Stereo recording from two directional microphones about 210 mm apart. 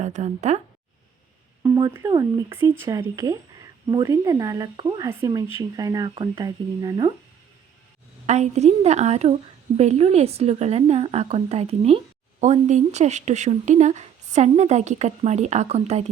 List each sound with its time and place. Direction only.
0.0 s a woman's voice: 35° right (ahead or behind)
1.6 s speech: 15° right (ahead or behind)
8.3 s a woman's voice: 30° right (ahead or behind)